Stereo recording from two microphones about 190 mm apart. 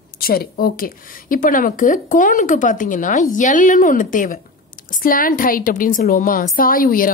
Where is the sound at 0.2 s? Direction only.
55° left (ahead or behind).